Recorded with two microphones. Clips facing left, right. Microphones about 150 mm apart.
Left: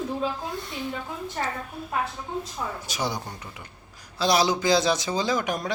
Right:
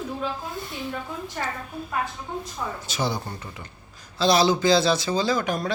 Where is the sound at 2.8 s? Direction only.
10° left (ahead or behind).